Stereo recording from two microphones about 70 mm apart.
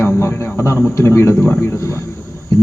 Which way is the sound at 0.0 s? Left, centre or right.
Left.